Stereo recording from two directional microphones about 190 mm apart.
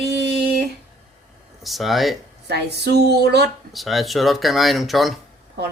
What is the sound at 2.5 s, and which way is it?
Female singing, 60° right (ahead or behind).